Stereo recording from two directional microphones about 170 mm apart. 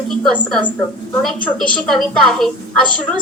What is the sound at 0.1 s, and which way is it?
A woman's voice, 5° left (ahead or behind).